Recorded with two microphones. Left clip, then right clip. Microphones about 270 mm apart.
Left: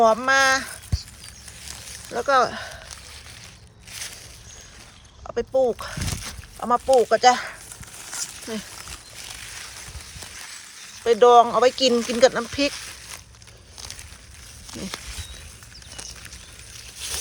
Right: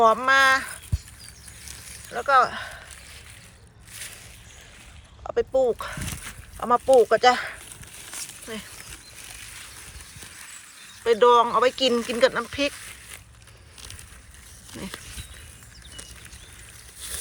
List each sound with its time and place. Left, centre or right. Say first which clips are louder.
0.0 s speech: even; centre
2.1 s speech: even; centre
5.2 s speech: left 1 dB; centre
11.0 s speech: left 3 dB; centre
14.7 s speech: left 3 dB; centre